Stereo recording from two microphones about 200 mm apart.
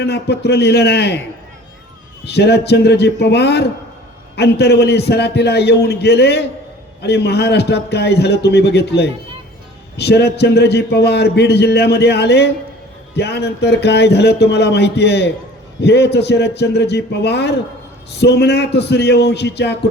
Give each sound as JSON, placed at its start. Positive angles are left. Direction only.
{"t": 0.0, "sound": "a man's voice", "side_deg": 55}
{"t": 2.2, "sound": "a man's voice", "side_deg": 55}